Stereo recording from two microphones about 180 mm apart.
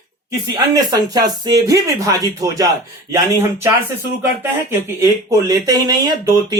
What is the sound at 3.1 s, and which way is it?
Speech, 15° right (ahead or behind).